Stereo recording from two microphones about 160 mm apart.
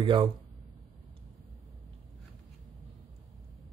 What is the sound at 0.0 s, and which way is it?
Speech, 30° right (ahead or behind).